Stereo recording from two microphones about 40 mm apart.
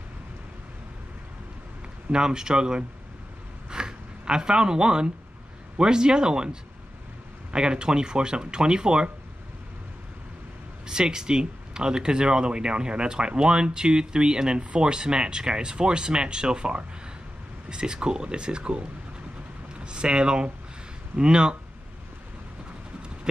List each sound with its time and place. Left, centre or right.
2.0 s speech: centre
3.7 s zipper: right
5.8 s speech: right
10.9 s speech: centre